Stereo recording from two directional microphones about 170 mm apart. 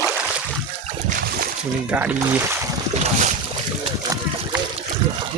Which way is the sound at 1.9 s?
10° right (ahead or behind).